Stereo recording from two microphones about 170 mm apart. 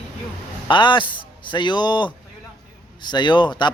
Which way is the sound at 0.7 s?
30° left (ahead or behind).